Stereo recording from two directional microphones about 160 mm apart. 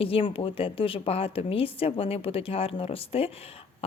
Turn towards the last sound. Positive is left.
turn(degrees=35)  # may be behind; listen again after turning